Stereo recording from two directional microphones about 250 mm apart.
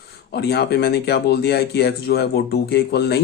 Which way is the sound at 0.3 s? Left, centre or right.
Left.